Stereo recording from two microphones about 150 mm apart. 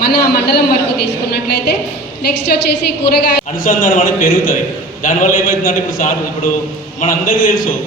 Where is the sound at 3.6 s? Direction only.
65° left (ahead or behind).